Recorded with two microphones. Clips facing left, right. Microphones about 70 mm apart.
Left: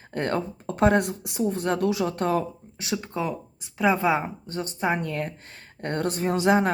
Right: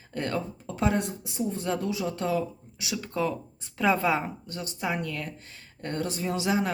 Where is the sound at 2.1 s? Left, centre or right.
Left.